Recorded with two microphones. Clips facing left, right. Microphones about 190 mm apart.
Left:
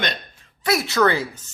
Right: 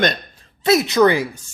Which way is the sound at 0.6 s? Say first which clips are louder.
Right 5 dB; 20° right (ahead or behind).